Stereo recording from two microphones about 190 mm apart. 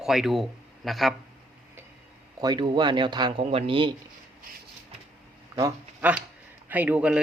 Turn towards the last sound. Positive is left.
turn(degrees=-5)  # may be behind; listen again after turning